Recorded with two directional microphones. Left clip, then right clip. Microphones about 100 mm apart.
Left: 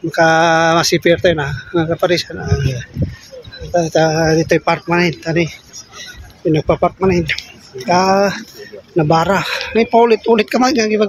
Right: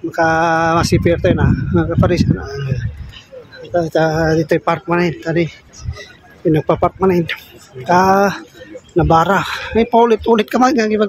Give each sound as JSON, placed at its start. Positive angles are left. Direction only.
{"t": 0.1, "sound": "speech", "side_deg": 5}
{"t": 3.7, "sound": "speech", "side_deg": -10}
{"t": 5.9, "sound": "a sound", "side_deg": -25}
{"t": 6.7, "sound": "speech", "side_deg": -30}